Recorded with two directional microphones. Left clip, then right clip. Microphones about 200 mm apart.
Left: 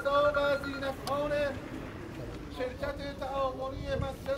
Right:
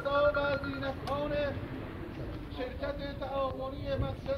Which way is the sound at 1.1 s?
50° left (ahead or behind).